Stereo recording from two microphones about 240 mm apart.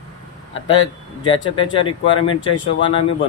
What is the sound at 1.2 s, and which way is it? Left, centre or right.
Speech, left.